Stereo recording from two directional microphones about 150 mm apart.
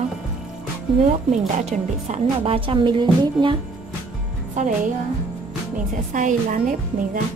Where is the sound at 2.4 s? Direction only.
35° right (ahead or behind).